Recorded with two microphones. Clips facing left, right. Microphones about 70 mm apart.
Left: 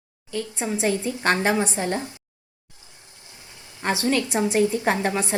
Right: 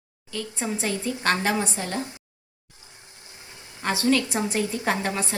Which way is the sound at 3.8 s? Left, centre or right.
Centre.